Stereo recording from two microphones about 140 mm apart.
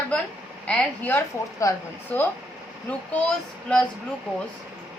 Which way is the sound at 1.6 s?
25° left (ahead or behind).